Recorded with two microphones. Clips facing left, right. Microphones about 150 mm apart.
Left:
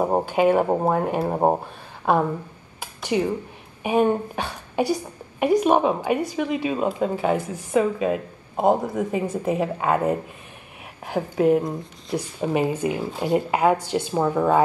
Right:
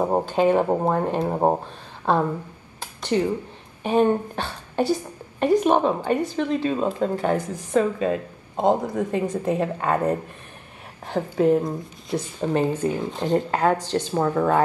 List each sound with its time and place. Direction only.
0.0 s a woman's voice: 10° left (ahead or behind)
2.8 s a sound: 10° left (ahead or behind)
3.8 s a woman's voice: 10° left (ahead or behind)